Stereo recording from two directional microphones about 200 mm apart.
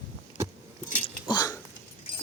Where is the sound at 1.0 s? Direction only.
20° left (ahead or behind).